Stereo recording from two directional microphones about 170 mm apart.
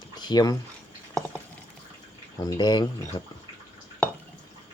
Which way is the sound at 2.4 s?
25° left (ahead or behind).